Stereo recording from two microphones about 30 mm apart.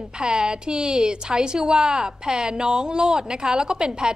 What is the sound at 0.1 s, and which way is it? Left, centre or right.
A woman's voice, right.